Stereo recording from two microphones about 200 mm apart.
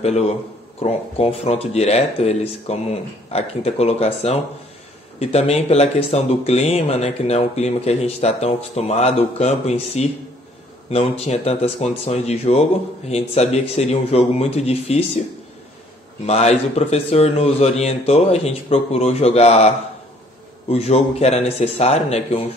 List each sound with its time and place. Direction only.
0.0 s speech: 30° left (ahead or behind)
16.3 s speech: 30° left (ahead or behind)